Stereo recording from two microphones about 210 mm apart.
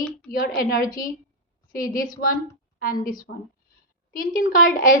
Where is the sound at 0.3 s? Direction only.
40° left (ahead or behind).